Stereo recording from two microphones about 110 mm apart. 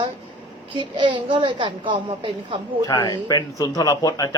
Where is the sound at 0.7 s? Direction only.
50° right (ahead or behind).